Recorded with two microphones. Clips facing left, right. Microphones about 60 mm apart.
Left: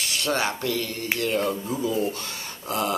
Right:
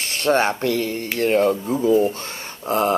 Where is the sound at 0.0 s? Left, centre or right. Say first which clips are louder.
Right 7 dB; right.